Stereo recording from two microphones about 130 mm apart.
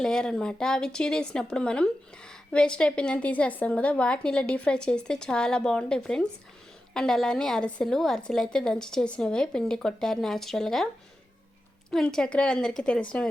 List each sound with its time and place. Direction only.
0.0 s a woman's voice: 5° left (ahead or behind)
11.9 s a woman's voice: 5° left (ahead or behind)